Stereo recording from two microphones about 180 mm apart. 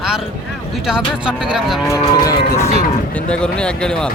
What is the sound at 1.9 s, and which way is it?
Speech, 20° left (ahead or behind).